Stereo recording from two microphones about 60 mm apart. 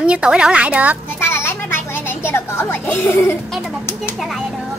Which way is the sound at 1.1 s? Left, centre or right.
Left.